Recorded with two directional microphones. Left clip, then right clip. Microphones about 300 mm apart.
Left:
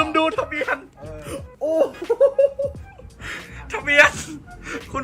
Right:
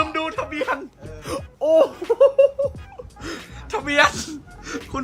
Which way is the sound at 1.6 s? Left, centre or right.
Centre.